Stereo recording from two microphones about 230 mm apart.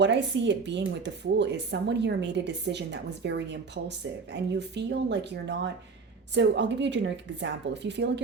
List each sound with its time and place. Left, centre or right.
0.0 s speech: right